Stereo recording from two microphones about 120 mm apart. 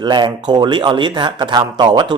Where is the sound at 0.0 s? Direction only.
40° right (ahead or behind).